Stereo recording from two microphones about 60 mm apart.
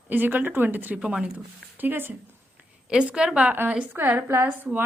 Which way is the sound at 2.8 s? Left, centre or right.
Centre.